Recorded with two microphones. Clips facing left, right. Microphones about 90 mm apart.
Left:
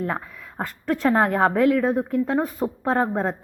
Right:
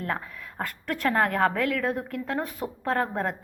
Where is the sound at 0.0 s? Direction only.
20° left (ahead or behind).